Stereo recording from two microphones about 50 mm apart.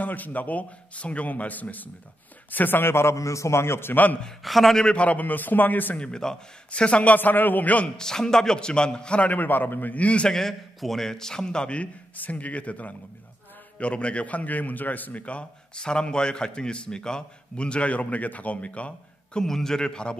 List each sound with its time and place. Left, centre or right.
0.0 s a man's voice: left
3.9 s a man's voice: left
4.4 s a man's voice: centre
4.7 s a man's voice: left
5.9 s a man's voice: centre
7.2 s a man's voice: left
8.0 s a man's voice: centre
9.3 s a man's voice: left
10.3 s a man's voice: centre; by 19.4 s left
19.4 s a man's voice: centre